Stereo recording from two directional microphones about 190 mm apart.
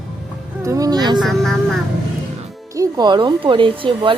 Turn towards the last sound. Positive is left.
turn(degrees=-25)  # may be behind; listen again after turning